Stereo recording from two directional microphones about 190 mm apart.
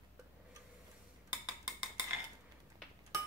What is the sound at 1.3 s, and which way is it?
Cutlery, 5° right (ahead or behind).